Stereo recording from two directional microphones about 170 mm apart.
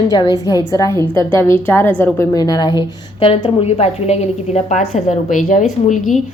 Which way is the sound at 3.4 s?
40° left (ahead or behind).